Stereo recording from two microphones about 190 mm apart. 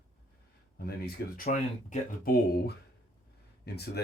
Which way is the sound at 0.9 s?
50° left (ahead or behind).